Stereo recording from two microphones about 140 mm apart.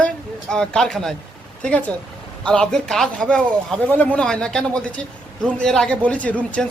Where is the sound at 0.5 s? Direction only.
5° left (ahead or behind).